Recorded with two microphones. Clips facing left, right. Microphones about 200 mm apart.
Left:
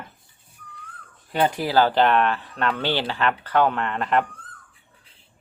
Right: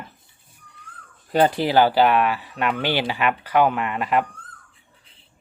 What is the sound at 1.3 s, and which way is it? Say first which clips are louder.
Speech: right 4 dB; 35° right (ahead or behind).